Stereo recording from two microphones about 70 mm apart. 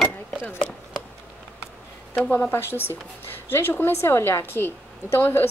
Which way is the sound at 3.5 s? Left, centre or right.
Left.